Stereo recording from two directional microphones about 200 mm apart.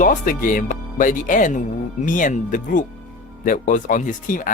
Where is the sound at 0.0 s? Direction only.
40° left (ahead or behind).